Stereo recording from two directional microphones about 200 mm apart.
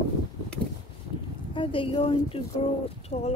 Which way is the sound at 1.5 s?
25° left (ahead or behind).